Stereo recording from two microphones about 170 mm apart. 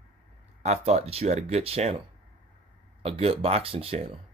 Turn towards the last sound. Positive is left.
turn(degrees=-35)  # may be behind; listen again after turning